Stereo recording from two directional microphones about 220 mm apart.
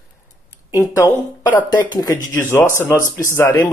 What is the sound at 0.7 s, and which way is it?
Speech, 15° left (ahead or behind).